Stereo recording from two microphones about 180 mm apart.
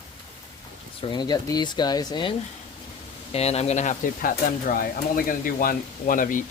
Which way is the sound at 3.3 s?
35° left (ahead or behind).